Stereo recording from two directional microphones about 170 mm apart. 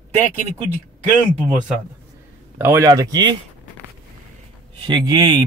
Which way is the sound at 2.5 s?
15° right (ahead or behind).